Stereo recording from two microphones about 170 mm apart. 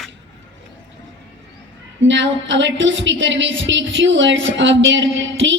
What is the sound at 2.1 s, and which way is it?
A woman's voice, 90° right.